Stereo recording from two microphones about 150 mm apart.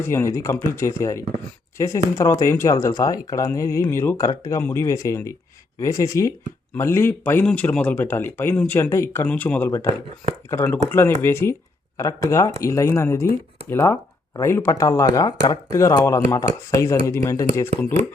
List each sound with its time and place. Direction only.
0.0 s speech: 15° left (ahead or behind)